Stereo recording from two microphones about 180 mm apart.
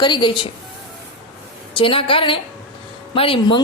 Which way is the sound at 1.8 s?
30° left (ahead or behind).